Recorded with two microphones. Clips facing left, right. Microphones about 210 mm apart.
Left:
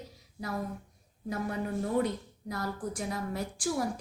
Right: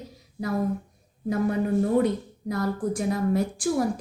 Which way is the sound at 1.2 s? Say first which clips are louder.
Right 9 dB; 55° right (ahead or behind).